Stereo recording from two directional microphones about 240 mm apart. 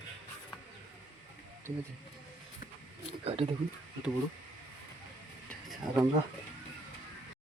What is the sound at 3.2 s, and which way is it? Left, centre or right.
Speech, right.